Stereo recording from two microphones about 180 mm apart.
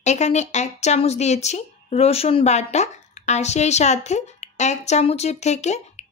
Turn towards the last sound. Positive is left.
turn(degrees=40)  # may be behind; listen again after turning